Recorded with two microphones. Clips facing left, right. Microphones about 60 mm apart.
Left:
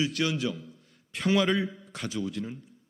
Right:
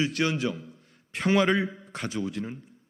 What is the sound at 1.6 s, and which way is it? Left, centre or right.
Speech, right.